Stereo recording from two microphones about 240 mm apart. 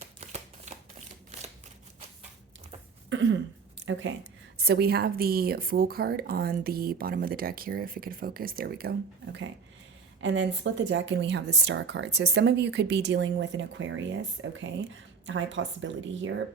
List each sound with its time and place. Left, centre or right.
0.2 s shuffling cards: right
3.1 s throat clearing: right
3.9 s speech: right
4.5 s a woman's voice: right